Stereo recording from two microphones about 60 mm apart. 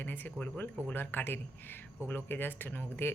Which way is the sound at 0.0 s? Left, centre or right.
Left.